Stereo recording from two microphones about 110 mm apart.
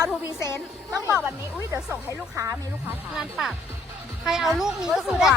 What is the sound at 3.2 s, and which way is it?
A woman's voice, centre (ahead or behind).